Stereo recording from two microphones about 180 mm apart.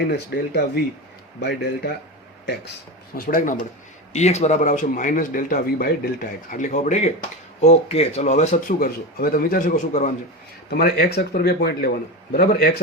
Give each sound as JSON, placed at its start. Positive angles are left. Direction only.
{"t": 0.1, "sound": "speech", "side_deg": 60}
{"t": 3.2, "sound": "speech", "side_deg": 50}
{"t": 4.1, "sound": "speech", "side_deg": 40}
{"t": 10.7, "sound": "speech", "side_deg": 60}